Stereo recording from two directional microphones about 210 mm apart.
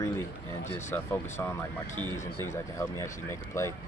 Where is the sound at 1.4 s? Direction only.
10° left (ahead or behind).